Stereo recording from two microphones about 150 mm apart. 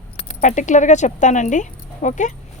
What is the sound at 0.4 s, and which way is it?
Speech, 55° left (ahead or behind).